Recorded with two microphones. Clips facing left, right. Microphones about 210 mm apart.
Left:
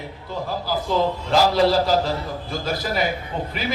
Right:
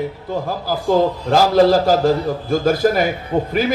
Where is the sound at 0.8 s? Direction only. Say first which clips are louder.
Right 8 dB; 50° right (ahead or behind).